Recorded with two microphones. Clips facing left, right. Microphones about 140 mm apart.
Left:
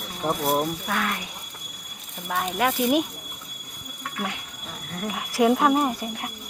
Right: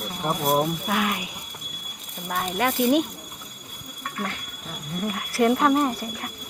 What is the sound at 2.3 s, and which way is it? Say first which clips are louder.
Speech: left 1 dB; centre (ahead or behind).